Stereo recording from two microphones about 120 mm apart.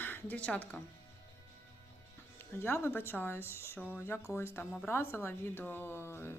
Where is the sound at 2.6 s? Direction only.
20° left (ahead or behind).